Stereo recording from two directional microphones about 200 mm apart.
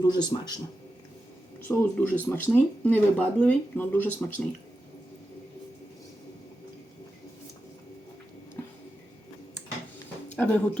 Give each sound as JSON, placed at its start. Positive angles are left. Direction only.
{"t": 0.0, "sound": "speech", "side_deg": 20}
{"t": 1.6, "sound": "speech", "side_deg": 10}
{"t": 10.2, "sound": "speech", "side_deg": 5}